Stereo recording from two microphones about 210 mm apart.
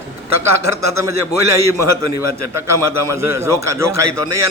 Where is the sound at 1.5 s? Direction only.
15° right (ahead or behind).